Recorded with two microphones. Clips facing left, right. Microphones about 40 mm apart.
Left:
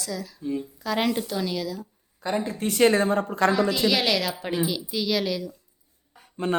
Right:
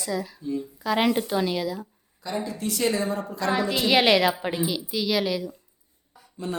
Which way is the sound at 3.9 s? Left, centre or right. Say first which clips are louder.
Right 4 dB; right.